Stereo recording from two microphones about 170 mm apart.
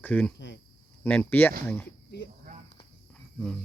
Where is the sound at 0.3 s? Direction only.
90° left.